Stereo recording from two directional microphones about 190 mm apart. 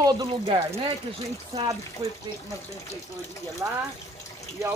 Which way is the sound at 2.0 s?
30° right (ahead or behind).